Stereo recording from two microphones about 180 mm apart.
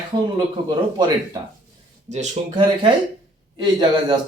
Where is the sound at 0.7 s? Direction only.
25° right (ahead or behind).